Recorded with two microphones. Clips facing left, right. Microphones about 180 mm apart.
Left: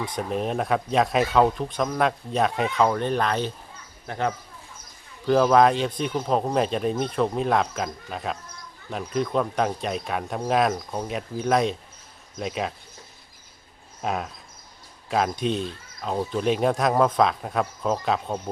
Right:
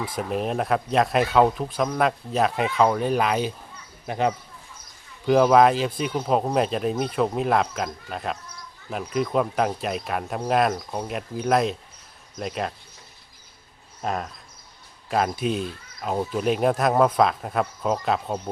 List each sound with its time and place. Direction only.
0.0 s speech: 5° right (ahead or behind)
14.0 s speech: centre (ahead or behind)